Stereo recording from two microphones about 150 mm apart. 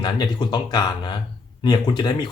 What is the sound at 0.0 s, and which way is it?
Speech, 30° left (ahead or behind).